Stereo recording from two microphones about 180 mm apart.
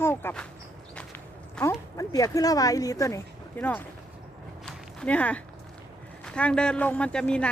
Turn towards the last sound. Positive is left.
turn(degrees=5)  # may be behind; listen again after turning